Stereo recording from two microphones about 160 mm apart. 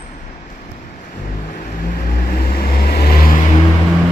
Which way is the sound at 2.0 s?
70° left (ahead or behind).